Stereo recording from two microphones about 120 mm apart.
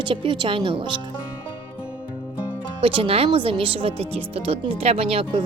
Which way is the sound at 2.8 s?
50° right (ahead or behind).